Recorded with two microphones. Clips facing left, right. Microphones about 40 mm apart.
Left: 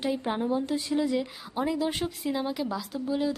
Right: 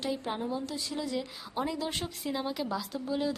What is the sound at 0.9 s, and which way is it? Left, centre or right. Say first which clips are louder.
A woman's voice: left 8 dB; centre.